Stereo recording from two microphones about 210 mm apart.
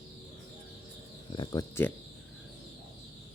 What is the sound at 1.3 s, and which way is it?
Speech, 20° left (ahead or behind).